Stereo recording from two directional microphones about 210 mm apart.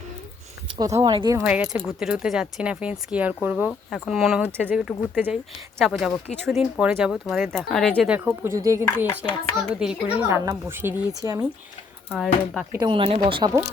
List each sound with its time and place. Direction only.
0.8 s a child's voice: 15° right (ahead or behind)
3.7 s speech: 5° left (ahead or behind)
8.1 s a child's voice: 10° right (ahead or behind)
9.6 s a child's voice: 5° right (ahead or behind)
12.1 s speech: centre (ahead or behind)
12.8 s speech: 25° right (ahead or behind)